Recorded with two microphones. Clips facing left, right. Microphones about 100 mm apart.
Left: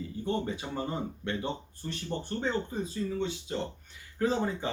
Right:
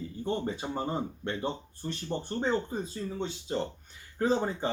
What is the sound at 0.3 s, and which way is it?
Speech, 35° right (ahead or behind).